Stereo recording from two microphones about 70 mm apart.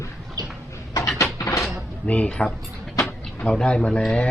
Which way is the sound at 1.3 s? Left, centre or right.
Left.